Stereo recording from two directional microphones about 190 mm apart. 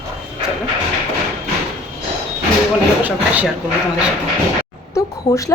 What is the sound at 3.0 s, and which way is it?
Speech, 10° right (ahead or behind).